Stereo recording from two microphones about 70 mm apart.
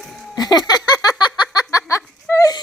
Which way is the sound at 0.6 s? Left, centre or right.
Left.